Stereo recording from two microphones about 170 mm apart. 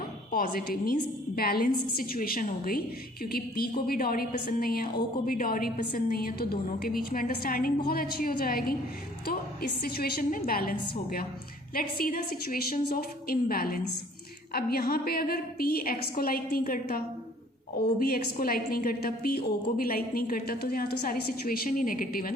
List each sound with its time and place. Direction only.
0.3 s a woman's voice: 55° left (ahead or behind)
18.0 s a woman's voice: 60° left (ahead or behind)